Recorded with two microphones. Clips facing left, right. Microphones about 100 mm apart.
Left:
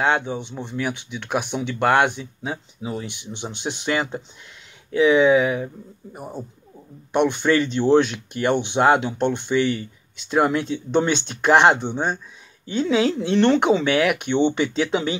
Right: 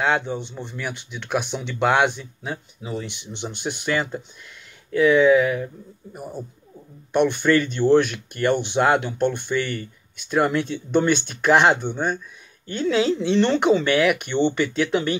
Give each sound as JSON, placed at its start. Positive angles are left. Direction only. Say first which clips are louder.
{"t": 0.0, "sound": "speech", "louder": "left 1 dB", "side_deg": 10}
{"t": 1.8, "sound": "speech", "louder": "left 1 dB", "side_deg": 0}
{"t": 2.0, "sound": "speech", "louder": "even", "side_deg": 15}
{"t": 9.7, "sound": "speech", "louder": "left 5 dB", "side_deg": -55}
{"t": 10.3, "sound": "speech", "louder": "left 1 dB", "side_deg": 15}